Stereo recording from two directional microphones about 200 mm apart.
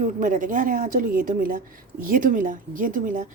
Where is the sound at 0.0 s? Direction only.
40° right (ahead or behind).